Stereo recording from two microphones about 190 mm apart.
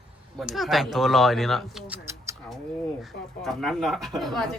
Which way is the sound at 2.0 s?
15° right (ahead or behind).